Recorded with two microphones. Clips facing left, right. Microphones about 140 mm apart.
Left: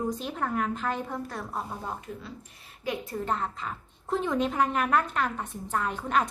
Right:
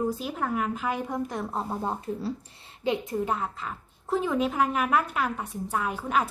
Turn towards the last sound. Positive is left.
turn(degrees=-5)  # may be behind; listen again after turning